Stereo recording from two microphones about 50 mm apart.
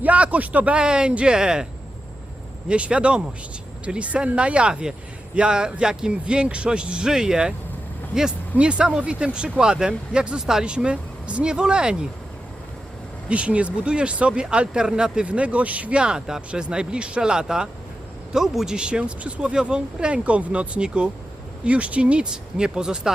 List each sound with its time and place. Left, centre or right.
0.0 s speech: right
0.8 s speech: centre
2.6 s speech: right
8.5 s speech: right
13.2 s speech: right